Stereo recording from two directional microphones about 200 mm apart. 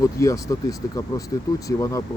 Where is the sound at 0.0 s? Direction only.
15° left (ahead or behind).